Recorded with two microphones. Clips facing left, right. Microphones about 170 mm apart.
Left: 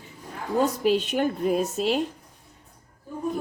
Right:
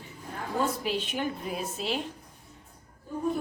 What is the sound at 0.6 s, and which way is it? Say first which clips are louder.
Speech: left 8 dB; 45° left (ahead or behind).